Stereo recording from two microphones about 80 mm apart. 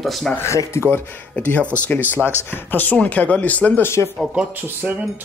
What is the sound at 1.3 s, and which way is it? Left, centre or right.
Speech, centre.